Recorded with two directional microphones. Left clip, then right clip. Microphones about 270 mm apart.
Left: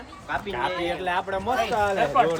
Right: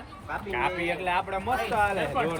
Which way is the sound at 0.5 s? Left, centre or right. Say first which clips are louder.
Right 1 dB; centre.